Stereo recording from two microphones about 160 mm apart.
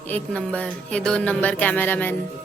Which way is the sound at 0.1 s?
10° left (ahead or behind).